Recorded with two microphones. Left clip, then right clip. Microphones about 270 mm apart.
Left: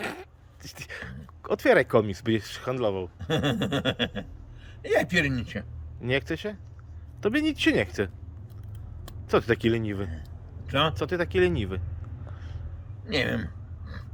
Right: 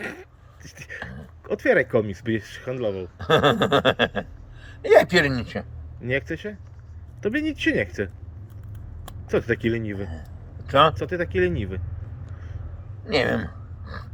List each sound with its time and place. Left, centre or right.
0.6 s speech: centre
3.2 s a sound: centre
5.0 s a man's voice: centre
5.3 s a man's voice: centre
9.3 s a man's voice: centre
13.1 s speech: centre